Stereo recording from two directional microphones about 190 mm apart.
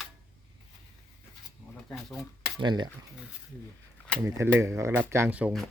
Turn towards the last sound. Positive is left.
turn(degrees=-5)  # may be behind; listen again after turning